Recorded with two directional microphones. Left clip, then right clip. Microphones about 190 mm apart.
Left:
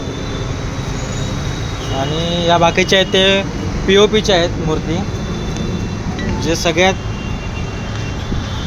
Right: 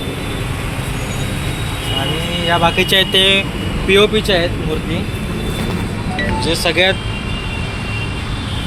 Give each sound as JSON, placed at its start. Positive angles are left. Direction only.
{"t": 2.5, "sound": "speech", "side_deg": 50}
{"t": 6.4, "sound": "speech", "side_deg": 45}